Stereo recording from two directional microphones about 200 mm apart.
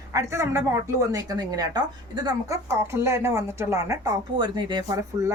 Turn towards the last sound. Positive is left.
turn(degrees=-20)  # may be behind; listen again after turning